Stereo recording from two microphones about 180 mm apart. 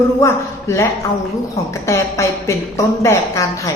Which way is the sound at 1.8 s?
15° left (ahead or behind).